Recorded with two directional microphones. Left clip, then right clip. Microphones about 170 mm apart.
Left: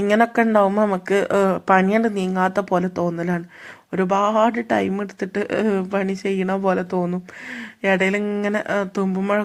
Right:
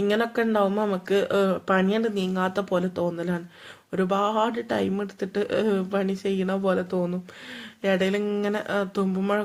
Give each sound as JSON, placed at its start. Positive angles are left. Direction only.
{"t": 0.0, "sound": "speech", "side_deg": 30}